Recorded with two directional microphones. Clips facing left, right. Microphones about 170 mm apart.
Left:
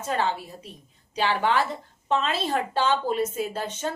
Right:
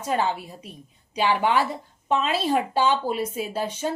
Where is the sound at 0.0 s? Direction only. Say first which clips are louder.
Right 2 dB; 15° right (ahead or behind).